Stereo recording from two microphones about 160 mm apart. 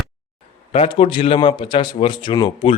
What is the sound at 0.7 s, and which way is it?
A man's voice, 40° left (ahead or behind).